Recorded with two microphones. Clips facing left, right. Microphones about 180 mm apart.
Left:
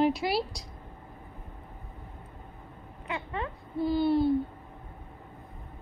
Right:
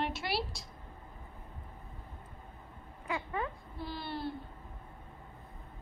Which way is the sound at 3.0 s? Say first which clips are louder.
Left 1 dB; 25° left (ahead or behind).